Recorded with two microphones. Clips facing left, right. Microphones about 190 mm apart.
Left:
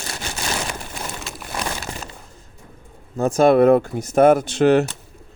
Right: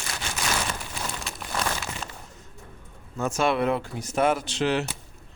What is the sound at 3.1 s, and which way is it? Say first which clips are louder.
Speech: left 10 dB; 35° left (ahead or behind).